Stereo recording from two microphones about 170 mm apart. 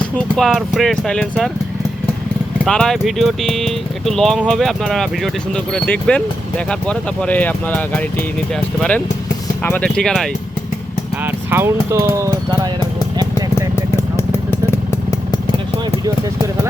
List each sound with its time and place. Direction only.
0.3 s speech: centre (ahead or behind)
2.6 s speech: 5° left (ahead or behind)
9.6 s speech: 10° left (ahead or behind)
11.3 s speech: 15° right (ahead or behind)
13.7 s vehicle: 15° left (ahead or behind)